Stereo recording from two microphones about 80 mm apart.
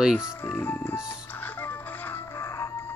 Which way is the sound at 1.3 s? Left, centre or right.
Left.